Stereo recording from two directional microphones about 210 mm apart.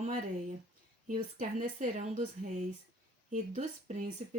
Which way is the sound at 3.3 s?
35° right (ahead or behind).